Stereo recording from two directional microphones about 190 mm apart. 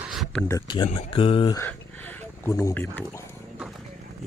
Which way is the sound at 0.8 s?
35° left (ahead or behind).